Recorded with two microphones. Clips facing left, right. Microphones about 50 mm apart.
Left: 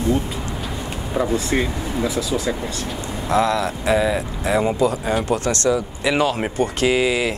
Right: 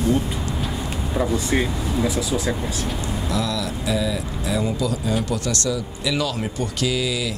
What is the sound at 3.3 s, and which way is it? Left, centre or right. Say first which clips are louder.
Speech: left 9 dB; left.